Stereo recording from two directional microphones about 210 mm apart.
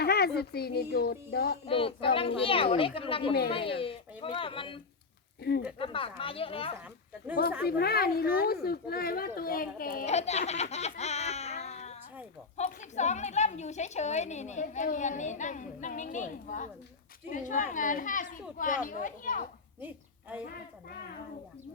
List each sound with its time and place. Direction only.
0.0 s a child's voice: 50° left (ahead or behind)
1.6 s speech: 25° left (ahead or behind)
5.4 s speech: 50° left (ahead or behind)
5.8 s speech: 25° left (ahead or behind)
7.6 s speech: 50° left (ahead or behind)